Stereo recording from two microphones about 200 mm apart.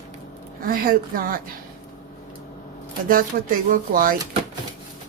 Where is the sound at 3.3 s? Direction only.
45° right (ahead or behind).